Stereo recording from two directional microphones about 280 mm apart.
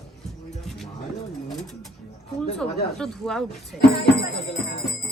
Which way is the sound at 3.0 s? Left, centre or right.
Centre.